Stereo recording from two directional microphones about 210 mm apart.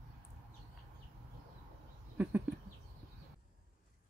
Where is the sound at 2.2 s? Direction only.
5° right (ahead or behind).